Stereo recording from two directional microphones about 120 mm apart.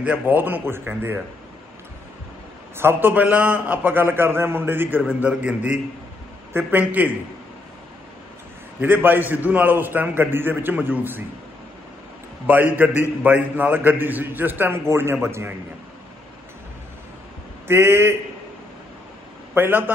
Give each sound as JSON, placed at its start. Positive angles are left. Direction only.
{"t": 0.0, "sound": "a man's voice", "side_deg": -15}
{"t": 2.8, "sound": "a man's voice", "side_deg": -15}
{"t": 8.8, "sound": "a man's voice", "side_deg": -15}
{"t": 12.4, "sound": "a man's voice", "side_deg": -15}
{"t": 17.6, "sound": "a man's voice", "side_deg": -20}
{"t": 19.5, "sound": "a man's voice", "side_deg": -15}